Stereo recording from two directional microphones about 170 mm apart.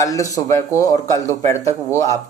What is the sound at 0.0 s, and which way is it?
Speech, 20° left (ahead or behind).